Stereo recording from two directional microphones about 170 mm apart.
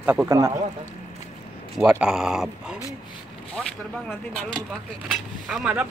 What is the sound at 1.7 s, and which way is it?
Speech, 5° right (ahead or behind).